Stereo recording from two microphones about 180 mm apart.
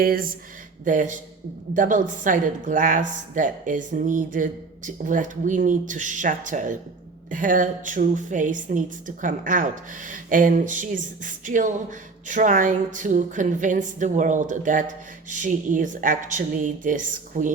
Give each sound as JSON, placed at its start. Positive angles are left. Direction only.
{"t": 0.0, "sound": "a woman's voice", "side_deg": -55}